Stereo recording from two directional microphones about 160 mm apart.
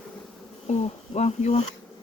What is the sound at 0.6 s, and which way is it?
Speech, 45° left (ahead or behind).